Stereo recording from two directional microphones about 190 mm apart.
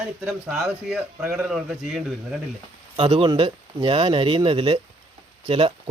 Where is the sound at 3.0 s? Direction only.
30° right (ahead or behind).